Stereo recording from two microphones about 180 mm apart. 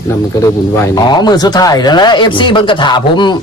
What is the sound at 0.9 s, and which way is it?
Speech, 20° left (ahead or behind).